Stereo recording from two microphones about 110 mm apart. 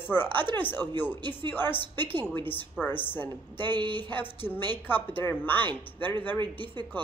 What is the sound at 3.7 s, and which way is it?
Speech, 45° right (ahead or behind).